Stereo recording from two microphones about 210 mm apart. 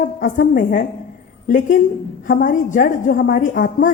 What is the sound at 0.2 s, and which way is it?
A woman's voice, 40° left (ahead or behind).